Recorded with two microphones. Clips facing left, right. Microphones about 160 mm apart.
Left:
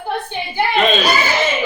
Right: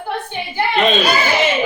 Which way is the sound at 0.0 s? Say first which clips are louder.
Left 1 dB; 15° left (ahead or behind).